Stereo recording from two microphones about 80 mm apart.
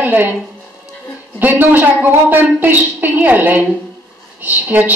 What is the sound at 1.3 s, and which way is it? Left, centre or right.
A woman's voice, right.